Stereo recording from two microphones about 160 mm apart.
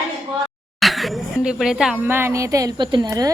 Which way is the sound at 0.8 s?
Centre (ahead or behind).